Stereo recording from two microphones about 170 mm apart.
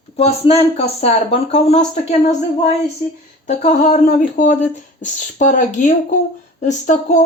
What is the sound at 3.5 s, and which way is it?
Speech, 45° left (ahead or behind).